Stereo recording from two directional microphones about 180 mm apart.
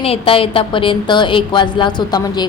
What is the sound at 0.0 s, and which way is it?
A woman's voice, 30° left (ahead or behind).